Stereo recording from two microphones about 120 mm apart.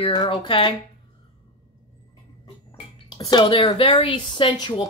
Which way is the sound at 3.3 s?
40° left (ahead or behind).